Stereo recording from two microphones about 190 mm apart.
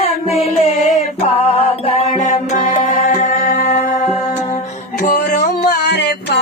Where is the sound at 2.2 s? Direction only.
45° left (ahead or behind).